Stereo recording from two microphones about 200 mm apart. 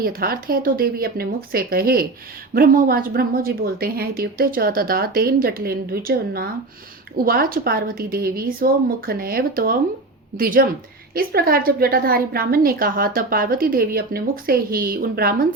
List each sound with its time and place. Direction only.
0.0 s a woman's voice: 50° right (ahead or behind)